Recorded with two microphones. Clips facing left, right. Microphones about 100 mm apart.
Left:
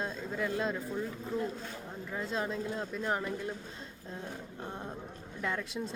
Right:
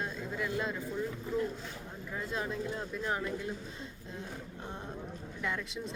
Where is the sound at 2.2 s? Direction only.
25° left (ahead or behind).